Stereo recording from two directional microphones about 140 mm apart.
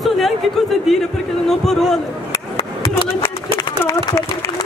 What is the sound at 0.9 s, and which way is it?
A man's voice, centre (ahead or behind).